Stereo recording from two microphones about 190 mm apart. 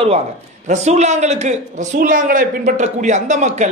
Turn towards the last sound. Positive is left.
turn(degrees=-40)  # may be behind; listen again after turning